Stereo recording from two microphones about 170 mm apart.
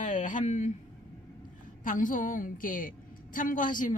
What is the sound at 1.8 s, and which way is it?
Speech, 50° left (ahead or behind).